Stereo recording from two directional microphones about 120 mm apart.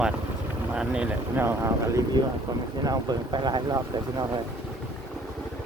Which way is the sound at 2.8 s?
35° right (ahead or behind).